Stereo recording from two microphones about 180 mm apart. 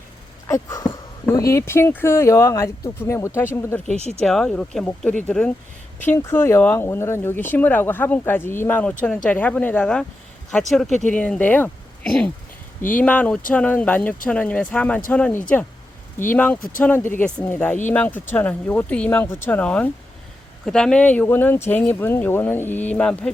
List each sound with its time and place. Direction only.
0.4 s speech: 15° left (ahead or behind)
16.6 s speech: 50° left (ahead or behind)
16.8 s speech: 10° left (ahead or behind)